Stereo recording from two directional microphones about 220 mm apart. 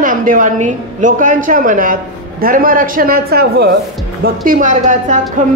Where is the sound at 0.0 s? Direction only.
40° right (ahead or behind).